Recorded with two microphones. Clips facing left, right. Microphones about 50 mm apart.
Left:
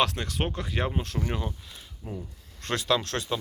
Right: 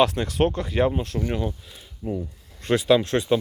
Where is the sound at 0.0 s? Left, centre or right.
Centre.